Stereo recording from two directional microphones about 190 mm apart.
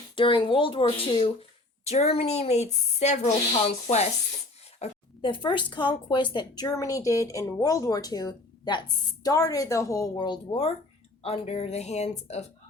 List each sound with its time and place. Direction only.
0.2 s speech: 25° left (ahead or behind)